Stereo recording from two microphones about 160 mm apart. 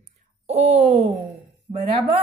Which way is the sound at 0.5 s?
40° right (ahead or behind).